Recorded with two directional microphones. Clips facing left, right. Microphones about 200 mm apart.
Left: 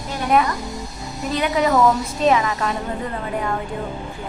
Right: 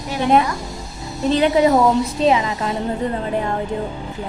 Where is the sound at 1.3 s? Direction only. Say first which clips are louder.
Right 5 dB; 30° right (ahead or behind).